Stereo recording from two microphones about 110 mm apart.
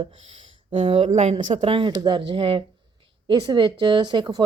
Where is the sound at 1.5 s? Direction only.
50° right (ahead or behind).